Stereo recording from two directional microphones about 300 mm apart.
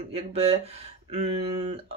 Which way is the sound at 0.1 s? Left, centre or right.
Centre.